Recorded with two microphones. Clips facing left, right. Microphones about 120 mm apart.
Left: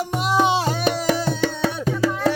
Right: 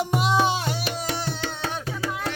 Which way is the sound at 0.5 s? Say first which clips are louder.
Left 6 dB; 35° left (ahead or behind).